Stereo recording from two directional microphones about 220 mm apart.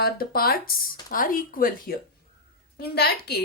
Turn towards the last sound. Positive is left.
turn(degrees=45)  # may be behind; listen again after turning